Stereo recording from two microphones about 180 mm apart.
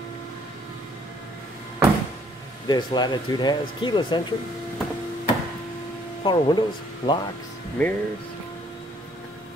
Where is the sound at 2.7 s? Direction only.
25° left (ahead or behind).